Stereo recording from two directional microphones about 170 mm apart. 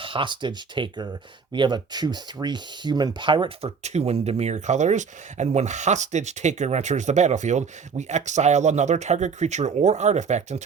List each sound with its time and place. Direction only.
0.0 s speech: 30° right (ahead or behind)